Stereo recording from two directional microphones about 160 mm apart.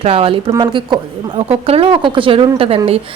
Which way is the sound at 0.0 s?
35° right (ahead or behind).